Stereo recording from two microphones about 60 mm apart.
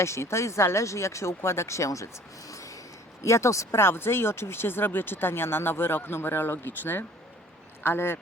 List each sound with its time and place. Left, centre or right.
0.0 s speech: left
2.5 s a sound: left
3.2 s speech: left